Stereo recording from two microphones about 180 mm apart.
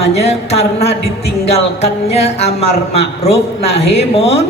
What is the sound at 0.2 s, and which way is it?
A man's voice, 35° left (ahead or behind).